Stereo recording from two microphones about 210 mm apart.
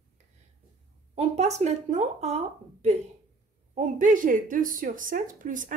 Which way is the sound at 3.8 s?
35° right (ahead or behind).